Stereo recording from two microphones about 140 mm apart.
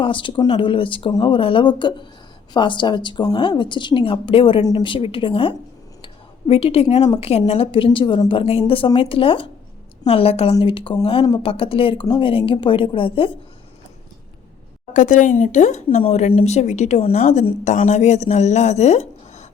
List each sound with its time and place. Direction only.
0.0 s a woman's voice: 35° left (ahead or behind)
14.9 s speech: 65° left (ahead or behind)